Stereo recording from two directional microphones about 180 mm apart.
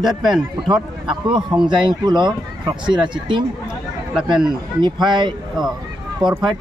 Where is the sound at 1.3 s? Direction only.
25° right (ahead or behind).